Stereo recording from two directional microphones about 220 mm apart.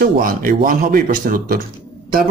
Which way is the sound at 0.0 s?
40° right (ahead or behind).